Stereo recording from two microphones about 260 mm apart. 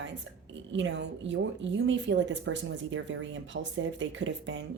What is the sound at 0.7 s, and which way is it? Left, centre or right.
A woman's voice, right.